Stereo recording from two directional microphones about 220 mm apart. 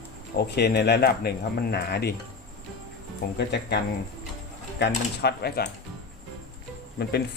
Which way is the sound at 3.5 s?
50° left (ahead or behind).